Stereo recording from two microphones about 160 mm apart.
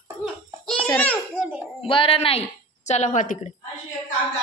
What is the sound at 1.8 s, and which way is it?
A woman's voice, 35° left (ahead or behind).